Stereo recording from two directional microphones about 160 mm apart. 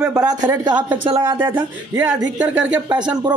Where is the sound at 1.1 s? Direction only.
30° right (ahead or behind).